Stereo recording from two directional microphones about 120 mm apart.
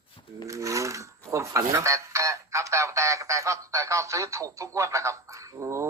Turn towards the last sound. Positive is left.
turn(degrees=-25)  # may be behind; listen again after turning